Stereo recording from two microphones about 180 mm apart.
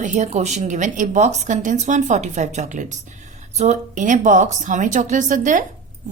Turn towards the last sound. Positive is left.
turn(degrees=-45)  # may be behind; listen again after turning